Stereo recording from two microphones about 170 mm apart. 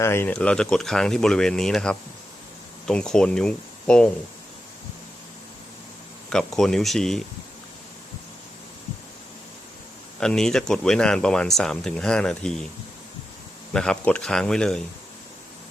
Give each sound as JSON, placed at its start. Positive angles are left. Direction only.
{"t": 0.0, "sound": "speech", "side_deg": 15}
{"t": 6.3, "sound": "speech", "side_deg": 5}
{"t": 10.2, "sound": "speech", "side_deg": 5}
{"t": 13.7, "sound": "speech", "side_deg": 5}